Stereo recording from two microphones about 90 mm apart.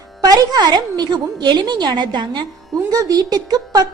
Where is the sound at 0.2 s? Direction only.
45° right (ahead or behind).